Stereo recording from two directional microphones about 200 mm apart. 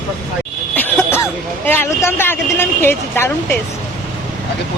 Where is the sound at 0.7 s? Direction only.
10° left (ahead or behind).